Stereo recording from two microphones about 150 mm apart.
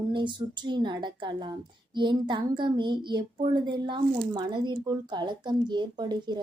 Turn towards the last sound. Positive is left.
turn(degrees=-30)  # may be behind; listen again after turning